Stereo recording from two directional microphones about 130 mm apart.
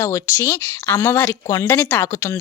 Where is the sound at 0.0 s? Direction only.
20° left (ahead or behind).